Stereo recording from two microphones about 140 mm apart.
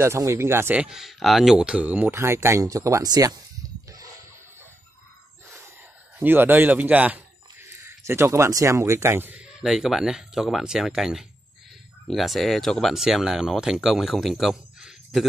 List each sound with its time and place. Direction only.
0.0 s speech: 20° right (ahead or behind)
6.1 s speech: 15° right (ahead or behind)